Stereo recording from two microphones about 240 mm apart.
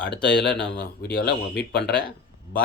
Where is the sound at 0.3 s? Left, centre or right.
Left.